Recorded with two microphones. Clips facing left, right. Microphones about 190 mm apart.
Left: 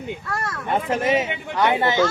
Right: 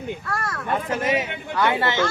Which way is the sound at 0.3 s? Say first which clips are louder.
Left 3 dB; 25° left (ahead or behind).